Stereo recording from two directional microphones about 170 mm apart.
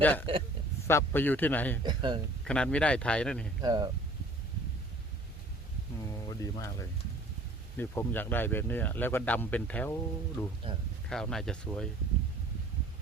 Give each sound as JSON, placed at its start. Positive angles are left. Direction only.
{"t": 0.0, "sound": "speech", "side_deg": 10}
{"t": 1.8, "sound": "speech", "side_deg": -25}
{"t": 2.4, "sound": "speech", "side_deg": 5}
{"t": 3.6, "sound": "speech", "side_deg": -25}
{"t": 6.1, "sound": "music", "side_deg": 20}
{"t": 7.8, "sound": "speech", "side_deg": 10}